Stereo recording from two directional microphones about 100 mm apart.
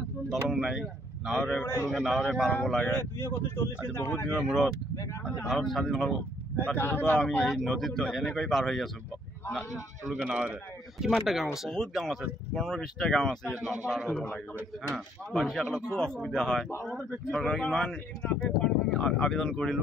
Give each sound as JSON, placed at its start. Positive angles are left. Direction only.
{"t": 0.3, "sound": "speech", "side_deg": -5}
{"t": 1.6, "sound": "speech", "side_deg": 20}
{"t": 1.9, "sound": "speech", "side_deg": 5}
{"t": 2.9, "sound": "speech", "side_deg": 25}
{"t": 5.2, "sound": "speech", "side_deg": 5}
{"t": 6.6, "sound": "speech", "side_deg": 15}
{"t": 7.4, "sound": "speech", "side_deg": 5}
{"t": 10.2, "sound": "speech", "side_deg": -10}